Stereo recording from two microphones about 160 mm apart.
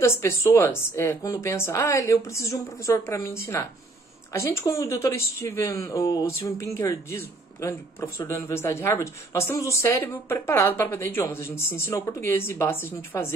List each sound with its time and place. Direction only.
0.0 s speech: 15° left (ahead or behind)